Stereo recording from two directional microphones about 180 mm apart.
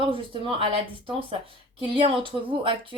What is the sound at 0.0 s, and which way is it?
Speech, 30° right (ahead or behind).